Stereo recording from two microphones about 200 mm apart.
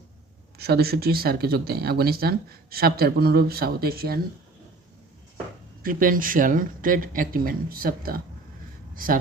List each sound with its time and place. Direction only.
0.6 s speech: 50° right (ahead or behind)
5.8 s speech: 45° right (ahead or behind)